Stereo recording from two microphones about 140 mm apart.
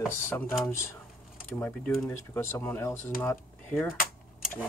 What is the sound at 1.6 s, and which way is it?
Speech, 15° left (ahead or behind).